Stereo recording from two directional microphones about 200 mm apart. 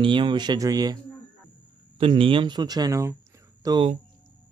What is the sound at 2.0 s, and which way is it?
Speech, 25° right (ahead or behind).